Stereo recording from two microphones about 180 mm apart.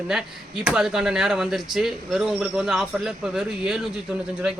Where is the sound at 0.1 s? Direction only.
5° right (ahead or behind).